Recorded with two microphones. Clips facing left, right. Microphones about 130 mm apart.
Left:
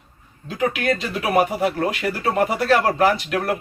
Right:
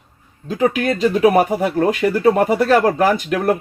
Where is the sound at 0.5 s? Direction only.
40° right (ahead or behind).